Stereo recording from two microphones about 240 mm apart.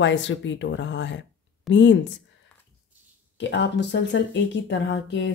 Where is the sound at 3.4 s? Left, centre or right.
Left.